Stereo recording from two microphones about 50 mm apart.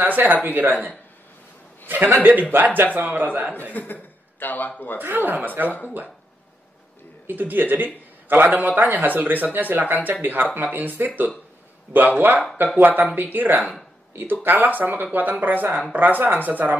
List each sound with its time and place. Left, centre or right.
0.0 s a man's voice: right
3.7 s a man's voice: left
5.0 s a man's voice: right
5.7 s speech: left
7.2 s a man's voice: right